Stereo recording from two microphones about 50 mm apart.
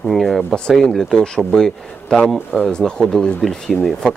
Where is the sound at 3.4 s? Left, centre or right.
Centre.